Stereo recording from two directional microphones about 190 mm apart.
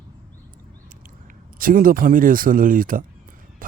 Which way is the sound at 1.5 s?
45° right (ahead or behind).